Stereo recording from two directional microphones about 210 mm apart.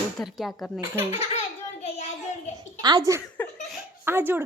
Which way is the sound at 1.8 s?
30° left (ahead or behind).